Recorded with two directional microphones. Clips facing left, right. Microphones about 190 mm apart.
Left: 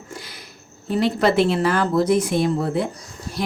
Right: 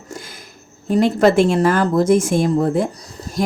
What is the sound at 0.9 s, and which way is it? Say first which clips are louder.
A woman's voice: right 5 dB; 45° right (ahead or behind).